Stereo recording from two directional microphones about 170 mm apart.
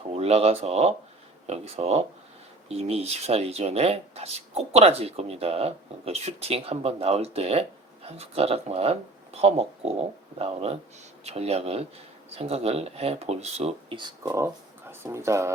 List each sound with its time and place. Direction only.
0.2 s speech: 35° right (ahead or behind)
14.0 s speech: 20° right (ahead or behind)